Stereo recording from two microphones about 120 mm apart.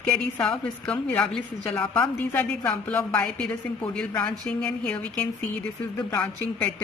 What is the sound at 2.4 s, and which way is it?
Speech, 10° left (ahead or behind).